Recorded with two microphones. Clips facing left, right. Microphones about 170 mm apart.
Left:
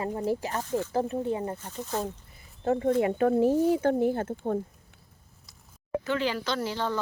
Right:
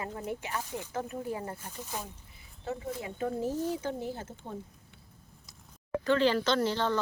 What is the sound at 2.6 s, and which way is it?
Speech, 60° left (ahead or behind).